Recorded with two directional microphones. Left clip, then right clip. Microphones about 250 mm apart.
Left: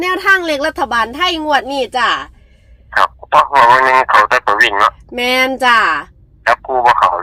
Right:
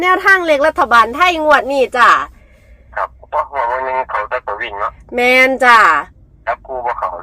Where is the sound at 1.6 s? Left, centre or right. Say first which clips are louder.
Right 4 dB; centre.